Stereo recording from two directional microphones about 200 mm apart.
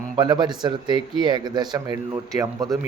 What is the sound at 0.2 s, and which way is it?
Speech, 20° right (ahead or behind).